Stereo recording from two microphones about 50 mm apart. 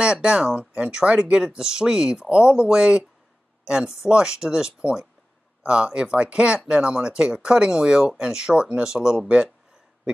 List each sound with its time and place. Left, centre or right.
0.0 s speech: centre